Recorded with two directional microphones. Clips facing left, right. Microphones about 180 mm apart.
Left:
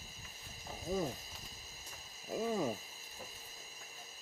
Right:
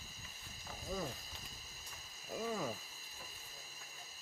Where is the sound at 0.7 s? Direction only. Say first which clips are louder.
Left 6 dB; 20° left (ahead or behind).